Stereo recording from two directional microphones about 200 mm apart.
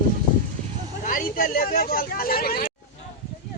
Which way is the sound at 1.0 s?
40° left (ahead or behind).